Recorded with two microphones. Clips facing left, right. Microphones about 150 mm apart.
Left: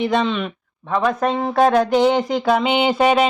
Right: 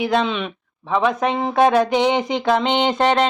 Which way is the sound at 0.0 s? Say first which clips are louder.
Left 1 dB; centre (ahead or behind).